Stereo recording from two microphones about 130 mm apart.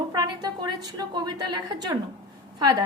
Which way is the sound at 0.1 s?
30° right (ahead or behind).